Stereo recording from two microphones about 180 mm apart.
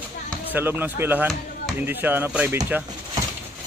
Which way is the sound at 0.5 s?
10° right (ahead or behind).